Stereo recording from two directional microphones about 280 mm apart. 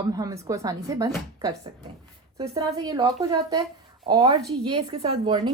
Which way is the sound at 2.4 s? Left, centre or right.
Centre.